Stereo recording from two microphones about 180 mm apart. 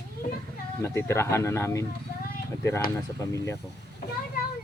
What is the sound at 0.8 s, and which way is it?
Speech, 15° left (ahead or behind).